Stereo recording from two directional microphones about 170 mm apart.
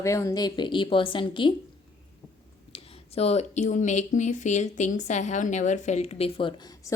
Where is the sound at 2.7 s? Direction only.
35° left (ahead or behind).